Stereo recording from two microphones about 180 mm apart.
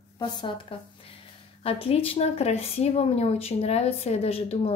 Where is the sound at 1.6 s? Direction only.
30° left (ahead or behind).